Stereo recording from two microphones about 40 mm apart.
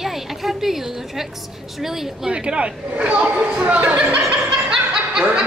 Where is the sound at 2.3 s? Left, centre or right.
Right.